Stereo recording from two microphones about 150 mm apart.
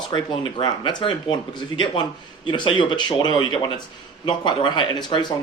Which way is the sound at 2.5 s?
30° left (ahead or behind).